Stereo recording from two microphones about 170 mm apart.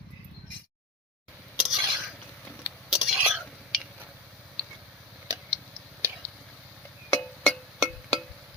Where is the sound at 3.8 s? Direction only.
10° right (ahead or behind).